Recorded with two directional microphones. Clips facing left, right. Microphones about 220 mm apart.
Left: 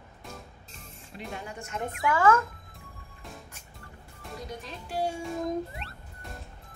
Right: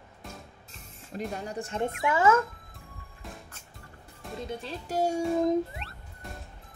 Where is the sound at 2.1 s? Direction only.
25° right (ahead or behind).